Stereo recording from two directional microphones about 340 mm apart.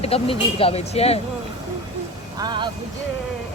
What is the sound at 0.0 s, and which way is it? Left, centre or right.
Speech, centre.